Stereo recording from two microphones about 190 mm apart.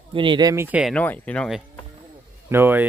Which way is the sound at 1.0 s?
10° left (ahead or behind).